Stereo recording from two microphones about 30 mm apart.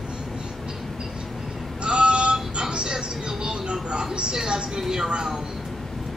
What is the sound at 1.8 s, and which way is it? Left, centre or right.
Synthetic singing, right.